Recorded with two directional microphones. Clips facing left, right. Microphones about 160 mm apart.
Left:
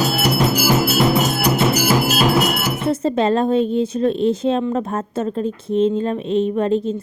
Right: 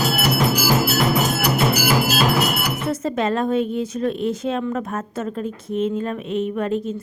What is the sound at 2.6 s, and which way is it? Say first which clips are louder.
A woman's voice: left 4 dB; 30° left (ahead or behind).